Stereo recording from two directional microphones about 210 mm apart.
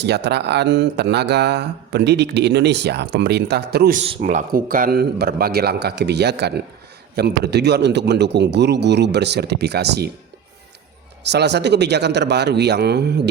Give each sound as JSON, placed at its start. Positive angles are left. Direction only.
{"t": 0.0, "sound": "speech", "side_deg": -55}
{"t": 11.2, "sound": "speech", "side_deg": -55}